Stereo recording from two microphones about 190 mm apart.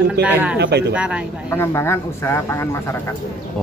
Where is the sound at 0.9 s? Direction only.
5° right (ahead or behind).